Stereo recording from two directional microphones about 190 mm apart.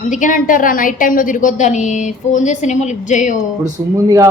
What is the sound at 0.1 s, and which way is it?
A woman's voice, 45° left (ahead or behind).